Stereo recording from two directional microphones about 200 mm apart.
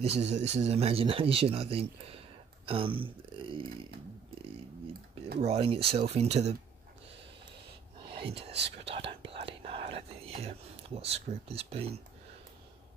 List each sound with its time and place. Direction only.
0.1 s speech: 30° right (ahead or behind)
5.4 s speech: 30° right (ahead or behind)
8.1 s speech: 25° right (ahead or behind)
8.8 s whispering: 25° right (ahead or behind)
11.0 s speech: 30° right (ahead or behind)